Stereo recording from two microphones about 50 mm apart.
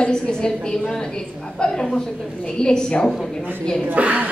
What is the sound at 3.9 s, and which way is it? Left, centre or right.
Speech, right.